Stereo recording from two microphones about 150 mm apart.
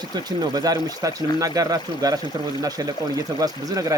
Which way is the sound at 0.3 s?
25° right (ahead or behind).